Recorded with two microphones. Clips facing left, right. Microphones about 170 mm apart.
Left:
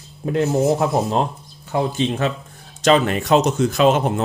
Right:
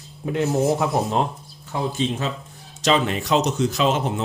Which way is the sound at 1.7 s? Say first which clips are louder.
Left 4 dB; 65° left (ahead or behind).